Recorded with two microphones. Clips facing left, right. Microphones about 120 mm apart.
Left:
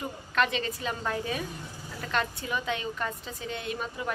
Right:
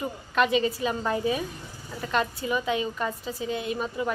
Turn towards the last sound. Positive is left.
turn(degrees=0)  # may be behind; listen again after turning